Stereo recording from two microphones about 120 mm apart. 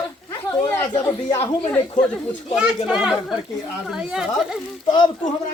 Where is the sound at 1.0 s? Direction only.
20° left (ahead or behind).